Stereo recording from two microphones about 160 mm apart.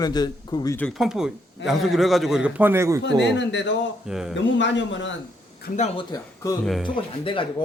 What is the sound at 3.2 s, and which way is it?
Speech, 90° left.